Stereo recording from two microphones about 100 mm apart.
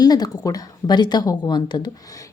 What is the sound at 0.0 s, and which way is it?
Speech, 40° left (ahead or behind).